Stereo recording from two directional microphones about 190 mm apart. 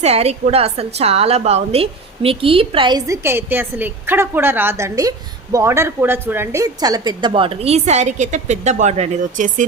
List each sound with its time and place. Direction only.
0.0 s a woman's voice: 35° right (ahead or behind)